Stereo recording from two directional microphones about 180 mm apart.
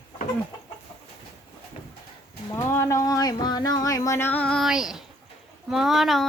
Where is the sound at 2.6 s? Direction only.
15° left (ahead or behind); by 5.0 s 5° right (ahead or behind).